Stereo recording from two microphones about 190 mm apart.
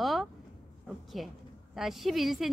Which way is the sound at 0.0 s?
Centre (ahead or behind).